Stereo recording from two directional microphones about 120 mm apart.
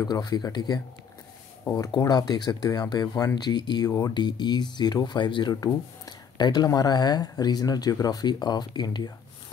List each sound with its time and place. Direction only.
0.0 s speech: 35° left (ahead or behind)
1.6 s speech: 20° left (ahead or behind)
2.0 s speech: 35° left (ahead or behind)